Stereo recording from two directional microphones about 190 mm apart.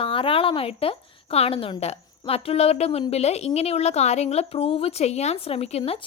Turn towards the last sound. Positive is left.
turn(degrees=30)  # may be behind; listen again after turning